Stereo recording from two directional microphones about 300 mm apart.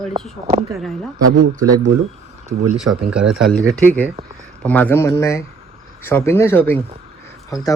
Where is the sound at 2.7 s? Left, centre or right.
Centre.